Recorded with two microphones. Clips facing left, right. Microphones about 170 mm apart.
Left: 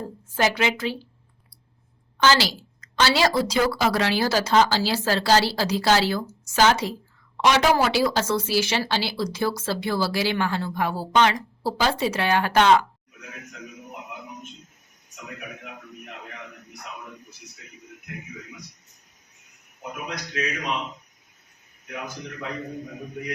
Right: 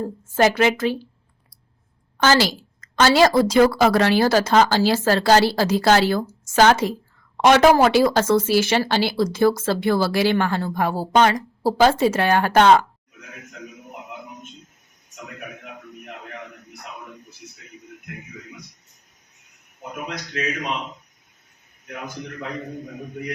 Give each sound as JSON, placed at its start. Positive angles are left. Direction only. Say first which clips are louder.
{"t": 0.3, "sound": "speech", "louder": "right 6 dB", "side_deg": -50}
{"t": 2.1, "sound": "speech", "louder": "right 3 dB", "side_deg": -50}